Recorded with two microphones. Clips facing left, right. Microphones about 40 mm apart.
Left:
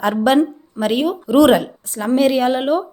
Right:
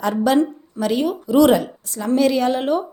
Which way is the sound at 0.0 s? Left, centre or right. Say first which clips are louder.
Left 2 dB; left.